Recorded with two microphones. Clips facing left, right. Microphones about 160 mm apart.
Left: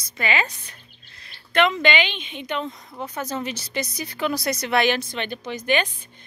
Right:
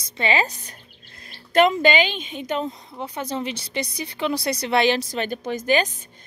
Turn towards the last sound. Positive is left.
turn(degrees=-45)  # may be behind; listen again after turning